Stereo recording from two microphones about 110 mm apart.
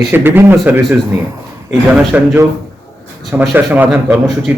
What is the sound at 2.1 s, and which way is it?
Speech, 15° right (ahead or behind).